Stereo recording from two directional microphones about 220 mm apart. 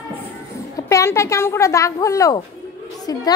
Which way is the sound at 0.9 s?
15° left (ahead or behind).